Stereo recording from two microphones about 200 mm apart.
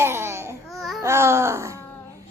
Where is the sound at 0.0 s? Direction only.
10° right (ahead or behind).